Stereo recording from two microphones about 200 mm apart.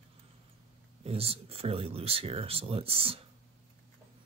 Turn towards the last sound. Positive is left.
turn(degrees=-30)  # may be behind; listen again after turning